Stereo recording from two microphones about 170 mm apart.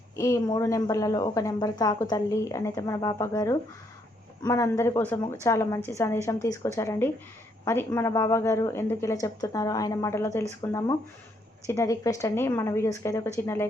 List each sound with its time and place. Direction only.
0.2 s a woman's voice: 20° left (ahead or behind)